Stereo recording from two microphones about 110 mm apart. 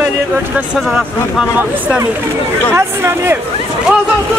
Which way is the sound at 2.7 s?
20° right (ahead or behind).